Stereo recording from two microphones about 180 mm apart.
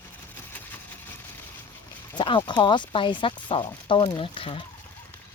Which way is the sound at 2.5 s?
25° left (ahead or behind).